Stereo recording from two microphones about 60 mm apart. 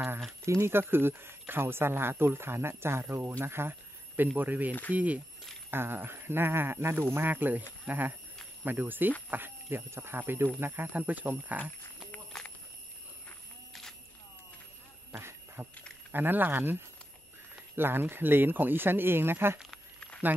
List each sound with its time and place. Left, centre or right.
0.5 s speech: right
4.4 s speech: right
5.7 s speech: right
7.2 s speech: right
10.9 s speech: right
12.3 s a sound: centre
15.1 s a sound: right
16.1 s speech: right
17.7 s speech: right